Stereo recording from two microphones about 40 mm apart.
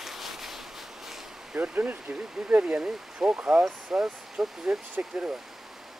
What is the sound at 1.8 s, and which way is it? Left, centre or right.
Speech, right.